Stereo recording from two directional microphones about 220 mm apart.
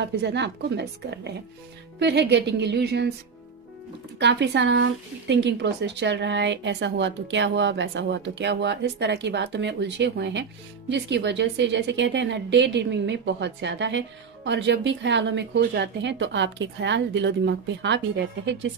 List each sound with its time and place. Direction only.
0.2 s a woman's voice: 50° right (ahead or behind)
4.2 s a woman's voice: 55° right (ahead or behind)